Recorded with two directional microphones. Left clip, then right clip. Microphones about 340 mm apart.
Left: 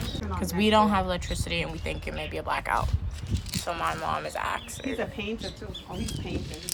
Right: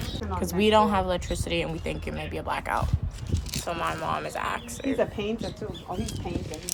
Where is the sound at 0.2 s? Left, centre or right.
Centre.